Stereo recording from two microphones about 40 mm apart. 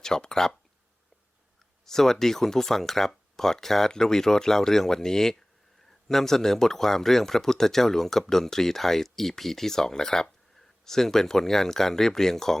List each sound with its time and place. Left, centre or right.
0.0 s speech: centre
1.8 s speech: centre